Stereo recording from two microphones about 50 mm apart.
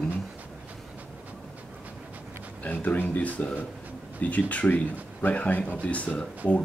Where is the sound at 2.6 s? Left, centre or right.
Left.